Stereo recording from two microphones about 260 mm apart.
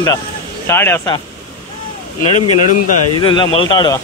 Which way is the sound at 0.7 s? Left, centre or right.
Centre.